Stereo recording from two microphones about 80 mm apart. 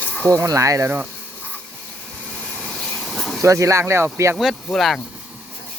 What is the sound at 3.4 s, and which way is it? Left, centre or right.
Speech, right.